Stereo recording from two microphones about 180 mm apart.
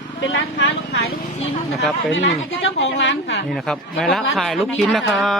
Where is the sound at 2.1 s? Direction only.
90° left.